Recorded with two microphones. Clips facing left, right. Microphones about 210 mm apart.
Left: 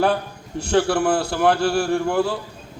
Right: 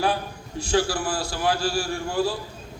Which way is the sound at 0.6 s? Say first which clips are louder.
Left 5 dB; 60° left (ahead or behind).